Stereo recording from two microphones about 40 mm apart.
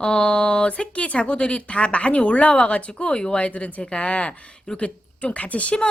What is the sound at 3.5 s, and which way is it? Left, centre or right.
Speech, left.